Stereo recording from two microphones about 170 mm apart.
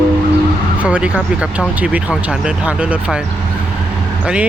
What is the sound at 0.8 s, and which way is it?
Speech, 5° right (ahead or behind).